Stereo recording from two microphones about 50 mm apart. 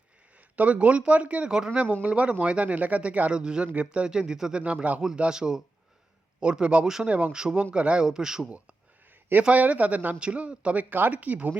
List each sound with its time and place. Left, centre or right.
0.3 s speech: right
1.5 s speech: centre
1.8 s a man's voice: right; by 4.6 s centre
4.6 s a man's voice: right
9.5 s a man's voice: right